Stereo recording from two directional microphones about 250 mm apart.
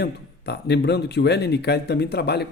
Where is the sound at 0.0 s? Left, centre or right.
Left.